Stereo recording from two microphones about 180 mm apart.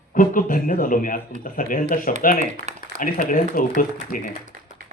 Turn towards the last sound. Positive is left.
turn(degrees=50)  # may be behind; listen again after turning